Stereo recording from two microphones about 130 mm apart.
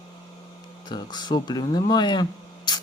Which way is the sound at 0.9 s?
35° left (ahead or behind).